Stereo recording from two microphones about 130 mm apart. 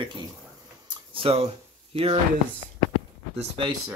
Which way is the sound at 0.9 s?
40° right (ahead or behind).